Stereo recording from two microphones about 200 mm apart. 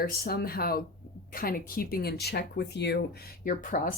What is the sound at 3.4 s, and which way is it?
Speech, 45° left (ahead or behind).